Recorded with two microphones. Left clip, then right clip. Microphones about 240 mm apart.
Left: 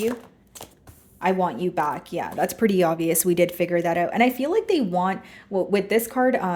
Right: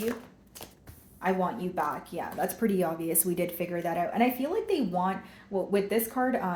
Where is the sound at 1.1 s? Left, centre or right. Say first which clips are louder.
Left 6 dB; left.